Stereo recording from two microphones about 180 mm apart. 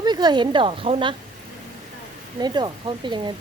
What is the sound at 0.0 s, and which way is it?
Speech, 25° right (ahead or behind).